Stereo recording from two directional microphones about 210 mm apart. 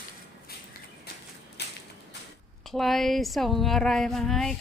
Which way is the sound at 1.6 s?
55° left (ahead or behind).